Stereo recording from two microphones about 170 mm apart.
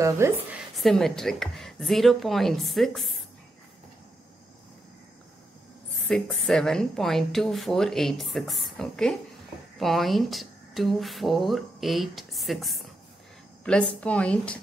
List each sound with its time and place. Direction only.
0.0 s a woman's voice: 15° right (ahead or behind)
0.7 s a woman's voice: centre (ahead or behind)
5.9 s a woman's voice: 5° left (ahead or behind)